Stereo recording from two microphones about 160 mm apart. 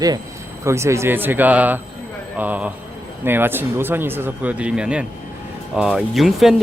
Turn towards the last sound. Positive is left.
turn(degrees=0)  # may be behind; listen again after turning